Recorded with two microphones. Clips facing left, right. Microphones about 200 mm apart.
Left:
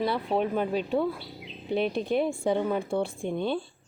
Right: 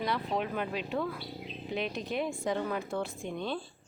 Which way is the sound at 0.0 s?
30° left (ahead or behind).